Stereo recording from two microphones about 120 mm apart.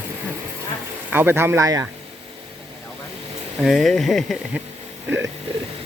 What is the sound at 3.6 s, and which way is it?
Speech, centre (ahead or behind).